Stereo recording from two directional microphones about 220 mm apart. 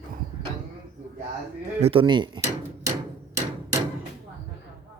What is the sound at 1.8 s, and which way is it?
Drawer open or close, 25° right (ahead or behind).